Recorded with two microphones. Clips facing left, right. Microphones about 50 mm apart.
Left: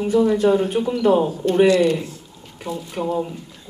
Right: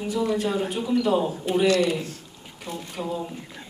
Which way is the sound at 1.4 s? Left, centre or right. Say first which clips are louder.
Left 4 dB; centre.